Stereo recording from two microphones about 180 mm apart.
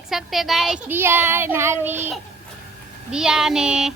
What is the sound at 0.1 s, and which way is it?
Speech, centre (ahead or behind).